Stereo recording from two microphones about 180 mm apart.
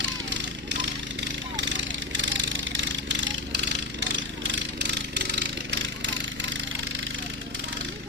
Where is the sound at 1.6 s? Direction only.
90° right.